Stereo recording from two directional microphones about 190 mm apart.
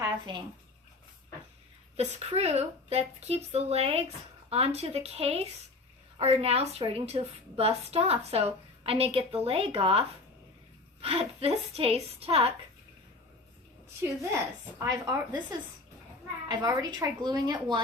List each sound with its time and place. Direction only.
0.0 s a sound: 25° right (ahead or behind)
2.0 s a woman's voice: 35° right (ahead or behind)
11.0 s a woman's voice: 30° right (ahead or behind)
14.2 s a woman's voice: 15° right (ahead or behind)
16.5 s a woman's voice: 20° right (ahead or behind)